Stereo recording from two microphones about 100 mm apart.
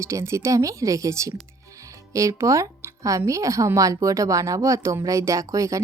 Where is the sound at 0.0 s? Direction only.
30° right (ahead or behind).